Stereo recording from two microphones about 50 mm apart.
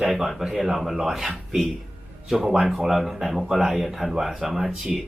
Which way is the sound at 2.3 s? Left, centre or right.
Centre.